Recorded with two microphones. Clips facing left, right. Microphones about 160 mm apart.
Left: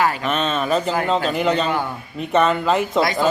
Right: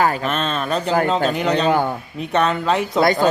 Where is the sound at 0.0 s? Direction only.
40° right (ahead or behind).